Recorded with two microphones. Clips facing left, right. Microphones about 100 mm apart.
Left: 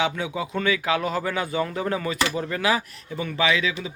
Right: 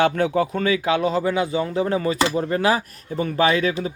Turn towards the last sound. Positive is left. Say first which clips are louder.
# right 4 dB
turn(degrees=-45)  # may be behind; listen again after turning